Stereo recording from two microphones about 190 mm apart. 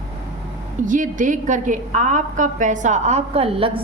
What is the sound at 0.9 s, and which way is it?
A woman's voice, 45° right (ahead or behind).